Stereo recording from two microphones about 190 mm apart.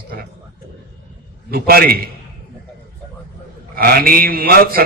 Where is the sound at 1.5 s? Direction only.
50° right (ahead or behind).